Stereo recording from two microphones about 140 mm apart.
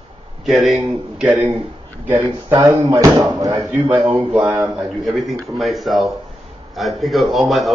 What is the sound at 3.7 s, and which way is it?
Speech, 10° right (ahead or behind).